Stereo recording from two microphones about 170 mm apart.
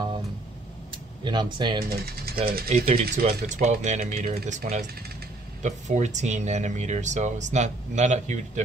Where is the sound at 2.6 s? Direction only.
35° right (ahead or behind).